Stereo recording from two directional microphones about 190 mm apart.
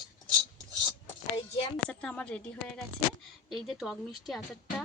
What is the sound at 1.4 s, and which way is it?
Speech, 30° left (ahead or behind).